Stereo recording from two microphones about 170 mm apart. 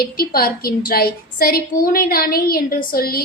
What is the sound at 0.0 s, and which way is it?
A woman's voice, 60° left (ahead or behind).